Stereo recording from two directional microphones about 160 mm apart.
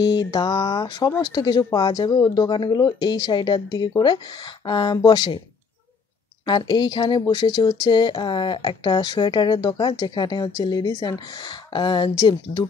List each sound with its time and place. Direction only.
0.0 s speech: 25° left (ahead or behind)
6.4 s speech: 30° left (ahead or behind)